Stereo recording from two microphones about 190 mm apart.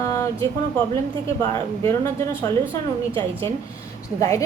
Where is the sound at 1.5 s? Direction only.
15° left (ahead or behind).